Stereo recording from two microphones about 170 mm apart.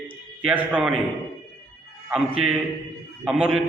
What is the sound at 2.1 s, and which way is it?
A man's voice, 5° right (ahead or behind).